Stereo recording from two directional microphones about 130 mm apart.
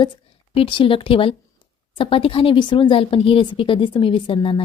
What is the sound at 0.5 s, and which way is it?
A woman's voice, 45° left (ahead or behind).